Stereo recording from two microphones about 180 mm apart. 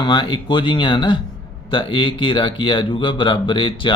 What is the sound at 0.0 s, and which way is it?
Speech, 25° left (ahead or behind).